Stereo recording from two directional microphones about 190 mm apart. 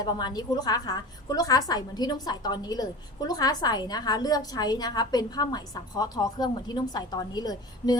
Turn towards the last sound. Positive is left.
turn(degrees=20)  # may be behind; listen again after turning